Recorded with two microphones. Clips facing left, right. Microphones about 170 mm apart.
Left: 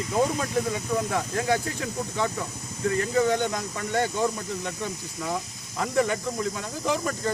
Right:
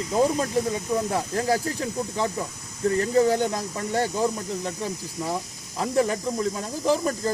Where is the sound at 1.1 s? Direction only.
35° right (ahead or behind).